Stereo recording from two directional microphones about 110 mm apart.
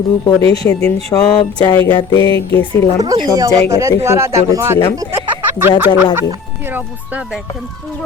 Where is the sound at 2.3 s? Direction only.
20° left (ahead or behind).